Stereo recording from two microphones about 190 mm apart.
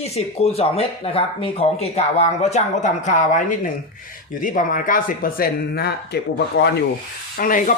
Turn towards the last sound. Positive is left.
turn(degrees=45)  # may be behind; listen again after turning